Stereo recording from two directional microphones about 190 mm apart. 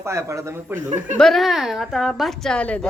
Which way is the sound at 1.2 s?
Centre (ahead or behind).